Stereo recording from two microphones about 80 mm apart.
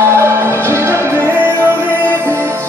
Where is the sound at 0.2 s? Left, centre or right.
Right.